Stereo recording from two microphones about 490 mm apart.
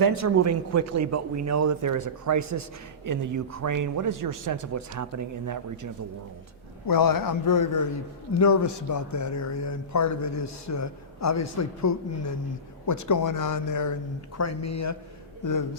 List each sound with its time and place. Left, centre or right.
0.0 s a man's voice: right
6.8 s a man's voice: left